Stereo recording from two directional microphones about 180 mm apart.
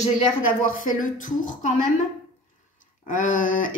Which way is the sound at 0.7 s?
45° left (ahead or behind).